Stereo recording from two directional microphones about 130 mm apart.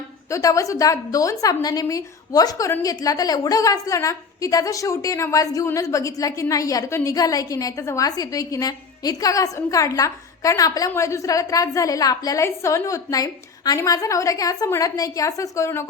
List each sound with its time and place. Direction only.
0.3 s a woman's voice: 25° left (ahead or behind)